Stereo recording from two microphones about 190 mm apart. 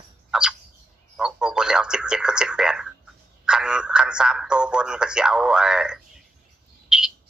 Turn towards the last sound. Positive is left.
turn(degrees=-5)  # may be behind; listen again after turning